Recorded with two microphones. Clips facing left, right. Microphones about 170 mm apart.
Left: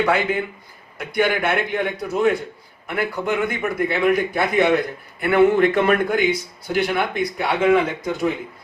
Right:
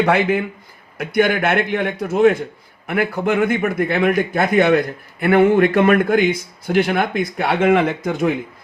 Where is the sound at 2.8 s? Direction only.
50° right (ahead or behind).